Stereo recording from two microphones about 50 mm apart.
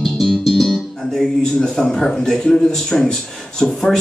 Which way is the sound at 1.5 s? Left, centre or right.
Centre.